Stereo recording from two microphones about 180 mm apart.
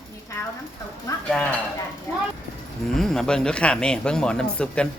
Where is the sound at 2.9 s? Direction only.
5° left (ahead or behind).